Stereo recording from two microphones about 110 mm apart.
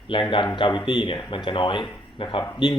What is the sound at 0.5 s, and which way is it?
Speech, 50° left (ahead or behind).